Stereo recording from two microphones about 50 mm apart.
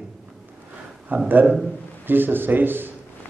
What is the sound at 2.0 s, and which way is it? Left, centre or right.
Speech, right.